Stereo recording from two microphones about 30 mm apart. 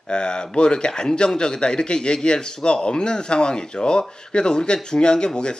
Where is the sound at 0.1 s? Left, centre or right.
Left.